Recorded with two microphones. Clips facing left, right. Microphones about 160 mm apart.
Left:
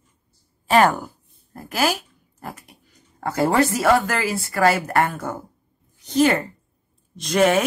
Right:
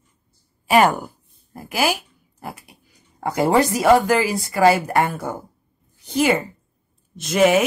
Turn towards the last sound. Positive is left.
turn(degrees=-5)  # may be behind; listen again after turning